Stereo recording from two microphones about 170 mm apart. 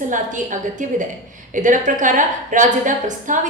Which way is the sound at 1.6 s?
50° right (ahead or behind).